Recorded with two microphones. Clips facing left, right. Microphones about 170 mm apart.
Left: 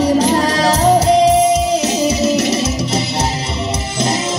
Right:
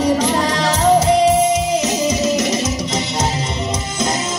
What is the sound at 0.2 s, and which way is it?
Music, 35° left (ahead or behind).